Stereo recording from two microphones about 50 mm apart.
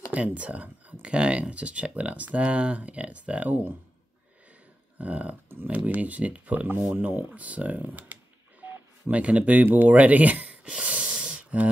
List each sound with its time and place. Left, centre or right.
0.1 s speech: right
4.9 s speech: right
5.5 s speech: right
5.8 s speech: right
8.6 s telephone dialing: right
9.1 s speech: right